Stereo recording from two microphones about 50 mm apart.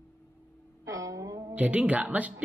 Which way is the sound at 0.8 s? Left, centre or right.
Right.